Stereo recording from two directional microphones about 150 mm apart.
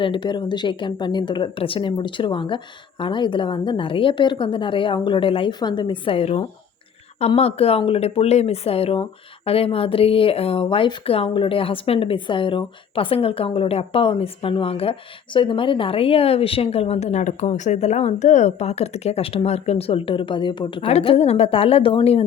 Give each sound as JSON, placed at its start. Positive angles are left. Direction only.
{"t": 0.0, "sound": "speech", "side_deg": 30}